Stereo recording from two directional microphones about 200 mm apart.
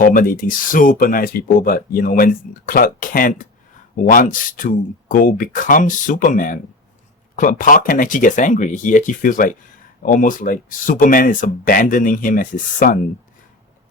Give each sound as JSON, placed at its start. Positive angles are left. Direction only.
{"t": 0.0, "sound": "speech", "side_deg": 45}